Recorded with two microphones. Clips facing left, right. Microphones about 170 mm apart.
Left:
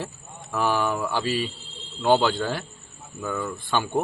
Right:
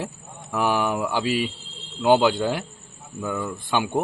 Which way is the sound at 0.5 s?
15° right (ahead or behind).